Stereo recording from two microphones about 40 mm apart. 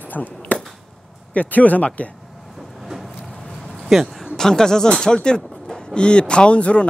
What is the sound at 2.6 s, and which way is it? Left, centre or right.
Train, centre.